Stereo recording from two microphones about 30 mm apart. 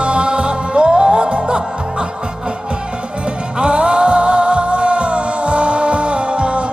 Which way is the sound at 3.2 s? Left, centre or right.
Right.